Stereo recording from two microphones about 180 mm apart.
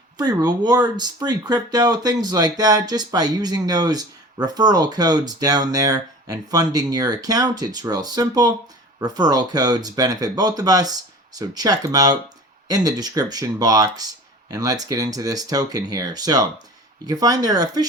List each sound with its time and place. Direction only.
0.2 s speech: 20° right (ahead or behind)